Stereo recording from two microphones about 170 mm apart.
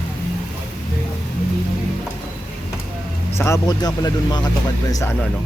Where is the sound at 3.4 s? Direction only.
20° left (ahead or behind).